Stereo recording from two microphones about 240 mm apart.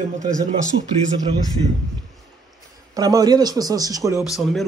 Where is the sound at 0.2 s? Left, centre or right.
Right.